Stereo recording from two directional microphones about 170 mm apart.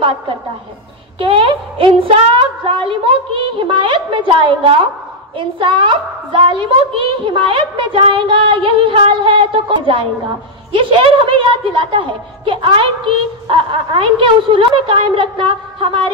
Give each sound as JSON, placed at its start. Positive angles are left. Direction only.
{"t": 1.2, "sound": "a child's voice", "side_deg": -30}